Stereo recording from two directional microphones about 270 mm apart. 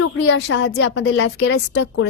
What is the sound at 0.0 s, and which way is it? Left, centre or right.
A woman's voice, left.